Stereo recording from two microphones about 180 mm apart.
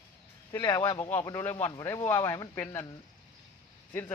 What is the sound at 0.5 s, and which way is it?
Speech, 20° left (ahead or behind).